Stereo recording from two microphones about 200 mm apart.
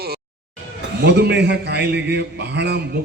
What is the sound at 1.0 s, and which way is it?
A man's voice, 55° right (ahead or behind).